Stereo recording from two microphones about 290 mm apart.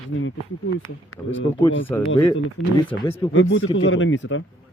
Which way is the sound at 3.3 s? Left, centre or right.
Left.